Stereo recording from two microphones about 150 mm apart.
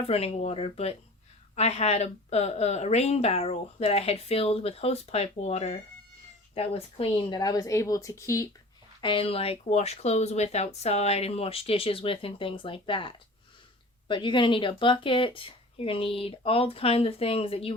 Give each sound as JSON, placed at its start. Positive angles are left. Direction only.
{"t": 0.1, "sound": "a woman's voice", "side_deg": 40}
{"t": 9.0, "sound": "speech", "side_deg": 35}